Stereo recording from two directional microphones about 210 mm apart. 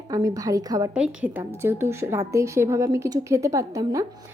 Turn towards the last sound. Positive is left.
turn(degrees=-15)  # may be behind; listen again after turning